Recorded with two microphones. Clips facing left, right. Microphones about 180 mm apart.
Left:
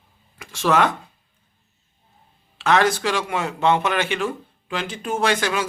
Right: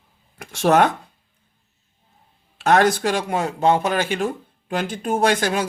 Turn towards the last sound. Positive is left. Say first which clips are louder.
# right 2 dB
turn(degrees=-40)  # may be behind; listen again after turning